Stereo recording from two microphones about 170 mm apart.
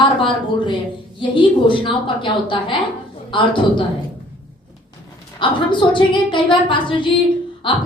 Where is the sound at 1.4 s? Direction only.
30° left (ahead or behind).